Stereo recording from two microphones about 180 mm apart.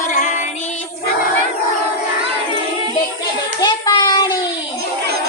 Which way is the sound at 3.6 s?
25° left (ahead or behind).